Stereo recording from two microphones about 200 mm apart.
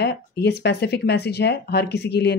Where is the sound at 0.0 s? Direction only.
55° left (ahead or behind).